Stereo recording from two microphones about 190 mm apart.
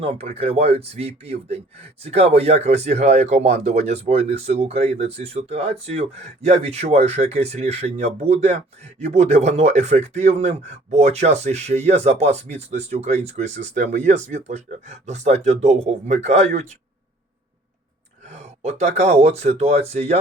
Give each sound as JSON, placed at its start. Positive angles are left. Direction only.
{"t": 0.0, "sound": "speech", "side_deg": -30}
{"t": 18.3, "sound": "speech", "side_deg": -35}